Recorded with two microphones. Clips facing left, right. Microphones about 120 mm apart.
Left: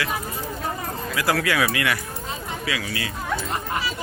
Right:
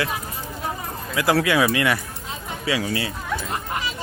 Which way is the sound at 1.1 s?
20° right (ahead or behind).